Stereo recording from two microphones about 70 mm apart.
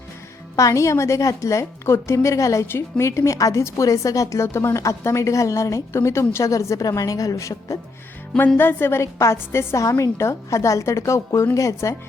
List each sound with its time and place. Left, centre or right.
0.5 s a woman's voice: left
4.4 s a woman's voice: left
8.5 s a woman's voice: left